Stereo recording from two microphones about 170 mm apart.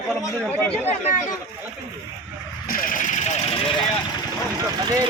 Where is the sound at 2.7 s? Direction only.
55° left (ahead or behind).